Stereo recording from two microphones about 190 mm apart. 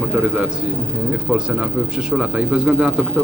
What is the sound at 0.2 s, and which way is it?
A man's voice, 5° right (ahead or behind).